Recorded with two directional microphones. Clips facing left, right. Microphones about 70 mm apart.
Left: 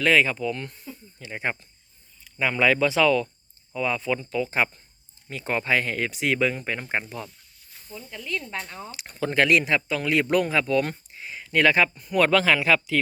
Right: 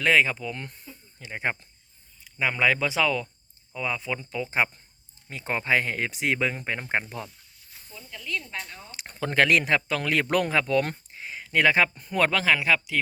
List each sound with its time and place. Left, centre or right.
0.0 s speech: right
1.2 s speech: right
2.2 s speech: centre; by 7.3 s right
7.9 s speech: left
8.9 s speech: right; by 13.0 s centre